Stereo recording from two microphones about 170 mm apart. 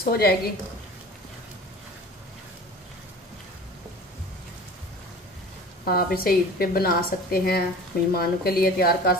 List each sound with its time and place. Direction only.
0.0 s a woman's voice: 65° left (ahead or behind)
5.9 s a woman's voice: 60° left (ahead or behind)